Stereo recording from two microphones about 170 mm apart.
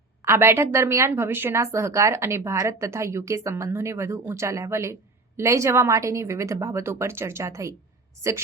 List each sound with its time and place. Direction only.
0.2 s a woman's voice: 15° right (ahead or behind)